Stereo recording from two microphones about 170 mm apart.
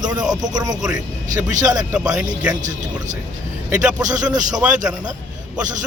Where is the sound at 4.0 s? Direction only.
20° right (ahead or behind).